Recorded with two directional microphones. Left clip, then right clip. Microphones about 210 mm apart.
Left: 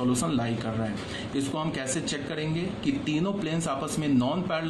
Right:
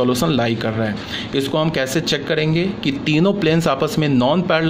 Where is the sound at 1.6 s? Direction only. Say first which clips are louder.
Right 12 dB; 45° right (ahead or behind).